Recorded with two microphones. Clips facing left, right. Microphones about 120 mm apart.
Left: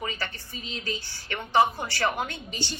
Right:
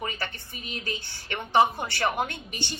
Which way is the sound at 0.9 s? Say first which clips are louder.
Left 1 dB; 20° right (ahead or behind).